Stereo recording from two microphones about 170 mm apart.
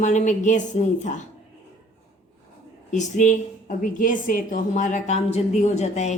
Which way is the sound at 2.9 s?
45° left (ahead or behind).